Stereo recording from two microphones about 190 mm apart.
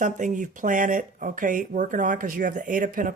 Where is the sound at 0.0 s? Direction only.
40° right (ahead or behind).